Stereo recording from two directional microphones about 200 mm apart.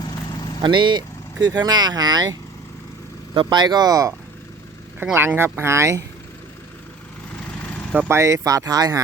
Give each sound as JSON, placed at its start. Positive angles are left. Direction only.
{"t": 0.0, "sound": "vehicle", "side_deg": 20}
{"t": 0.6, "sound": "speech", "side_deg": -25}
{"t": 3.3, "sound": "speech", "side_deg": -20}
{"t": 7.9, "sound": "speech", "side_deg": -10}